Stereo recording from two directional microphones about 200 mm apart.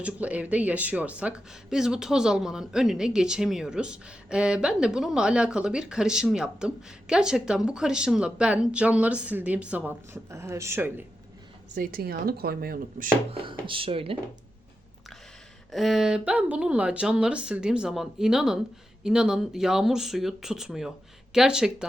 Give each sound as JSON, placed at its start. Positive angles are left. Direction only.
{"t": 0.0, "sound": "speech", "side_deg": -5}
{"t": 11.7, "sound": "speech", "side_deg": -45}
{"t": 13.3, "sound": "speech", "side_deg": -25}
{"t": 15.7, "sound": "speech", "side_deg": 0}